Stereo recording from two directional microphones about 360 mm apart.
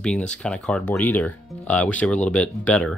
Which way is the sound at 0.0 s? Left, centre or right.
Centre.